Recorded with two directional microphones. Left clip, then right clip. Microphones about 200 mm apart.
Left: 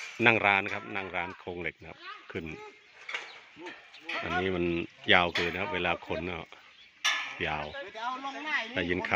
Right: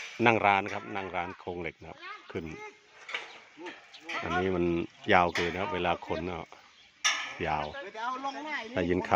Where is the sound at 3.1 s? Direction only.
Centre (ahead or behind).